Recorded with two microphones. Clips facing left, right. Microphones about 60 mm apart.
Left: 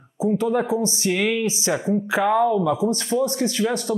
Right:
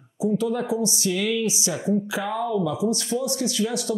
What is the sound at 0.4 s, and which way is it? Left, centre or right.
Speech, left.